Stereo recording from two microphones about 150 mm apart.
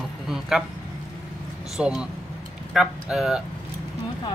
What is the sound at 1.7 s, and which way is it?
Speech, 5° right (ahead or behind).